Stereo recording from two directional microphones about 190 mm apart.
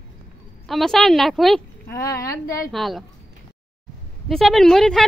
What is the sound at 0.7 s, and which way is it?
Speech, centre (ahead or behind).